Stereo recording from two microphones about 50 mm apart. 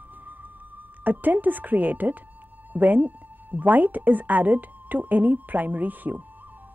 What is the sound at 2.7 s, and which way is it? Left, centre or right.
Speech, right.